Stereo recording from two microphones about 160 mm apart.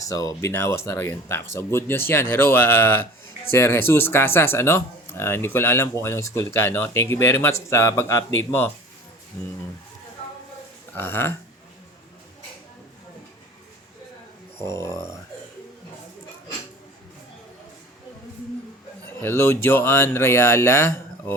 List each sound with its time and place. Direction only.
0.1 s speech: 20° left (ahead or behind)
10.9 s speech: 15° left (ahead or behind)
14.6 s speech: 20° left (ahead or behind)
19.2 s speech: 15° left (ahead or behind)